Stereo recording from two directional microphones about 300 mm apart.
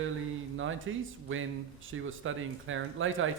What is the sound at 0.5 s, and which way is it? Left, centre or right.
A man's voice, right.